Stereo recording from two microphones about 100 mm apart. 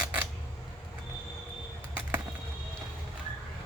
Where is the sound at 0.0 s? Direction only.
10° right (ahead or behind).